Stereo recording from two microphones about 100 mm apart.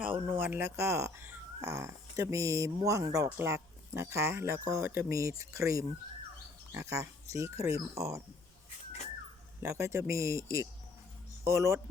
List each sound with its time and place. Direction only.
0.0 s speech: 20° right (ahead or behind)
9.6 s speech: 30° right (ahead or behind)